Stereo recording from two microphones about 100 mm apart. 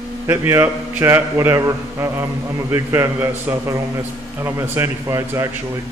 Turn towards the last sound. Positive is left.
turn(degrees=-35)  # may be behind; listen again after turning